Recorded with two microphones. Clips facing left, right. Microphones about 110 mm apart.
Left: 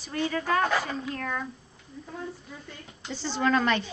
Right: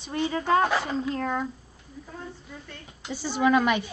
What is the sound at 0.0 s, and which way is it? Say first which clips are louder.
Speech: right 2 dB; 20° right (ahead or behind).